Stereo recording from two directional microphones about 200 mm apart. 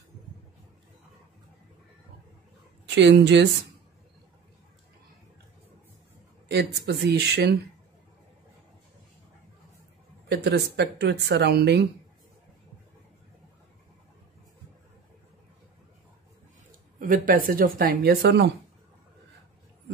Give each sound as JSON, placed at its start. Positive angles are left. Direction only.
{"t": 2.9, "sound": "speech", "side_deg": -60}
{"t": 6.5, "sound": "speech", "side_deg": -55}
{"t": 10.2, "sound": "speech", "side_deg": -55}
{"t": 17.0, "sound": "speech", "side_deg": -45}